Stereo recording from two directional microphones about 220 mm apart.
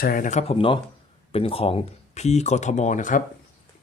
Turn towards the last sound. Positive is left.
turn(degrees=35)  # may be behind; listen again after turning